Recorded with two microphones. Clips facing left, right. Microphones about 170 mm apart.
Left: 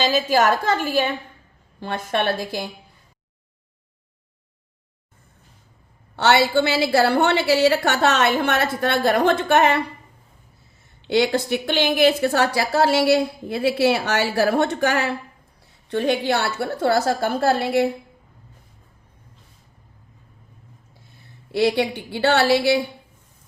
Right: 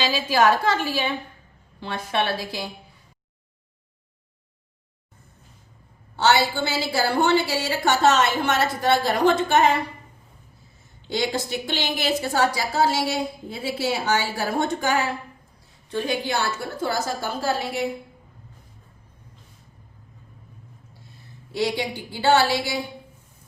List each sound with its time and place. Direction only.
0.0 s a woman's voice: 45° left (ahead or behind)
6.1 s a woman's voice: 65° left (ahead or behind)
11.1 s a woman's voice: 65° left (ahead or behind)
21.5 s a woman's voice: 65° left (ahead or behind)